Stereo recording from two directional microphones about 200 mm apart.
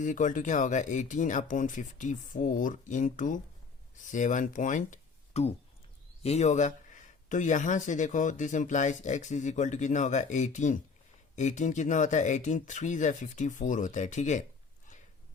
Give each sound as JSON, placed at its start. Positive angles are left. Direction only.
{"t": 0.0, "sound": "speech", "side_deg": 40}